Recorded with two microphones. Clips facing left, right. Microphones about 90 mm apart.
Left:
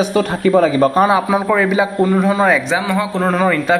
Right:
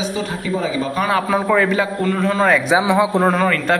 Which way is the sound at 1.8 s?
15° left (ahead or behind).